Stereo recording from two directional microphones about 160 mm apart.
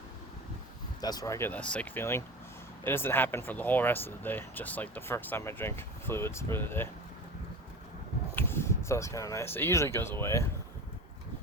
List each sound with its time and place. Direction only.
1.0 s speech: 20° left (ahead or behind)
8.4 s speech: 15° left (ahead or behind)